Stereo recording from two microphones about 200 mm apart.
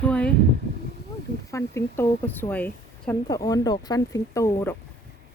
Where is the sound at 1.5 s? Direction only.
15° left (ahead or behind).